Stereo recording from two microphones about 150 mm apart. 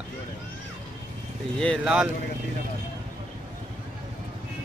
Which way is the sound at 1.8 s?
5° right (ahead or behind).